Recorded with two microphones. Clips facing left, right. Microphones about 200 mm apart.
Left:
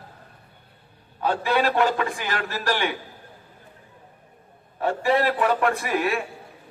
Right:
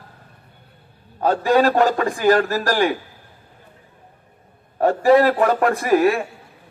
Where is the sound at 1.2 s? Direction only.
50° right (ahead or behind).